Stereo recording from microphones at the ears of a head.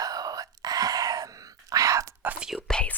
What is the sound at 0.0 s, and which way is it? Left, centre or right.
Whispering, right.